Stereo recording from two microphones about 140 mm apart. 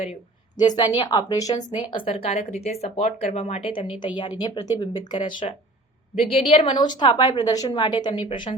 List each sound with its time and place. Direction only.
0.0 s a sound: 50° left (ahead or behind)
0.8 s a woman's voice: 30° left (ahead or behind)
6.1 s a woman's voice: 45° left (ahead or behind)